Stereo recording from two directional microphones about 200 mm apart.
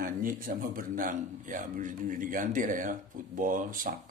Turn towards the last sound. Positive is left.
turn(degrees=-40)  # may be behind; listen again after turning